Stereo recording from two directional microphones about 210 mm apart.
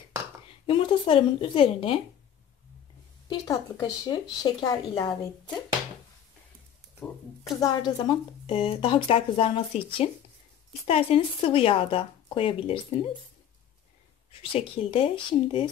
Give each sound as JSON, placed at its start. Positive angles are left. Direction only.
{"t": 0.7, "sound": "speech", "side_deg": 25}
{"t": 3.3, "sound": "speech", "side_deg": 15}
{"t": 7.6, "sound": "speech", "side_deg": 20}
{"t": 14.4, "sound": "speech", "side_deg": 25}